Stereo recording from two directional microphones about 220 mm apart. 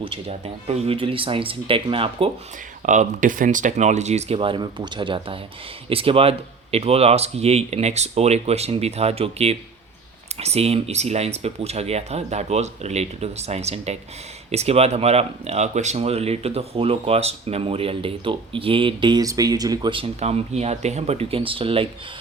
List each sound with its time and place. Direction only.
0.0 s speech: 25° right (ahead or behind)
2.8 s speech: 35° right (ahead or behind)